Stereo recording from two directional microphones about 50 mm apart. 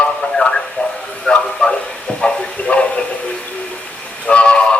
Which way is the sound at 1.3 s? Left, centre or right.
Centre.